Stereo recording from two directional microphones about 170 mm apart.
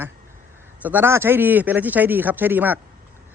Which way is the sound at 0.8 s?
10° right (ahead or behind).